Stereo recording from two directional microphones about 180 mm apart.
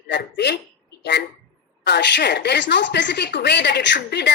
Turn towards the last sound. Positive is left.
turn(degrees=75)  # may be behind; listen again after turning